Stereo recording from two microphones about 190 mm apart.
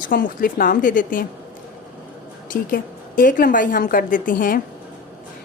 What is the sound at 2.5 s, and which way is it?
A woman's voice, 45° left (ahead or behind).